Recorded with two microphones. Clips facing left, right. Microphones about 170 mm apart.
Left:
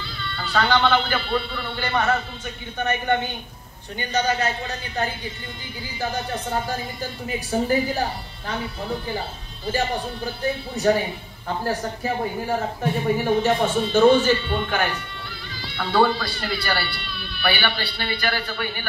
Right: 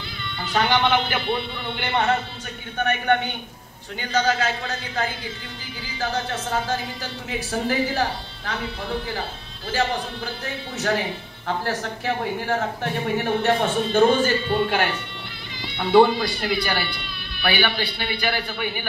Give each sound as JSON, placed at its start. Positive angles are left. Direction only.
{"t": 0.2, "sound": "a man's voice", "side_deg": -15}
{"t": 4.0, "sound": "a man's voice", "side_deg": -90}
{"t": 15.6, "sound": "speech", "side_deg": -20}